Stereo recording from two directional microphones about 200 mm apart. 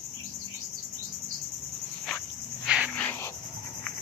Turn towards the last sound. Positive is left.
turn(degrees=10)  # may be behind; listen again after turning